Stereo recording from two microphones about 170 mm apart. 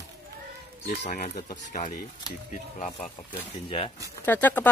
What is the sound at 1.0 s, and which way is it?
Speech, 45° left (ahead or behind).